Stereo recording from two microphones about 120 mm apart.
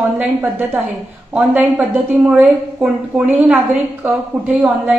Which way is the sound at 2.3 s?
10° right (ahead or behind).